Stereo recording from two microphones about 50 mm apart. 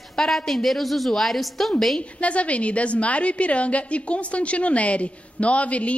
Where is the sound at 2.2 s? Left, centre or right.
Left.